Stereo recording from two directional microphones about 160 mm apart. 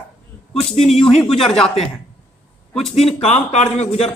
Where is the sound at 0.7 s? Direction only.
40° left (ahead or behind).